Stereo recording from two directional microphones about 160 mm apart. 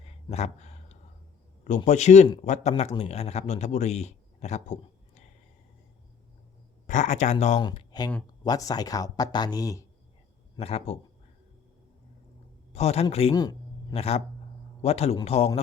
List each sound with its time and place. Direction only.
0.3 s a sound: 45° left (ahead or behind)
1.6 s a man's voice: 50° left (ahead or behind)
6.8 s speech: 50° left (ahead or behind)
7.6 s speech: 25° left (ahead or behind)
10.6 s a man's voice: 40° left (ahead or behind)
12.7 s a man's voice: 40° left (ahead or behind)
13.3 s speech: 25° left (ahead or behind)
13.9 s a man's voice: 40° left (ahead or behind)